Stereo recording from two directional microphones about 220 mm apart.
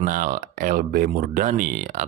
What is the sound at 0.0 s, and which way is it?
Speech, 40° right (ahead or behind).